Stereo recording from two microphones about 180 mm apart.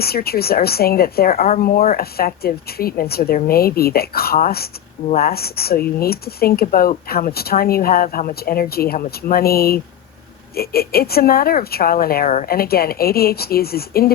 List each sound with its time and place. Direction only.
0.0 s speech: 60° left (ahead or behind)